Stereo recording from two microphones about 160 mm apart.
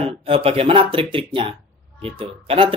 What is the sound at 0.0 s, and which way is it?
Speech, 35° right (ahead or behind).